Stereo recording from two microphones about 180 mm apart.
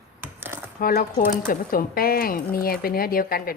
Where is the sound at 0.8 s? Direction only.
55° left (ahead or behind).